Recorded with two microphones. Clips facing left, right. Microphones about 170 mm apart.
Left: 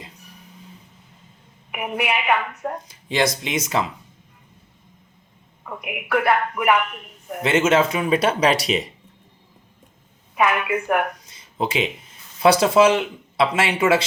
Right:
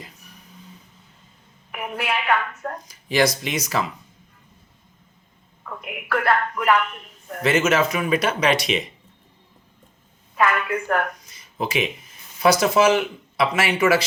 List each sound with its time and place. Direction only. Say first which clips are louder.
1.7 s a man's voice: left 2 dB; 15° left (ahead or behind)
2.8 s speech: right 2 dB; 25° left (ahead or behind)
5.6 s a man's voice: left 1 dB; 15° left (ahead or behind)
7.4 s speech: left 2 dB; 25° left (ahead or behind)
10.3 s a man's voice: left 1 dB; 15° left (ahead or behind)
11.3 s a sound: left 2 dB; 25° left (ahead or behind)
12.4 s speech: left 2 dB; 30° left (ahead or behind)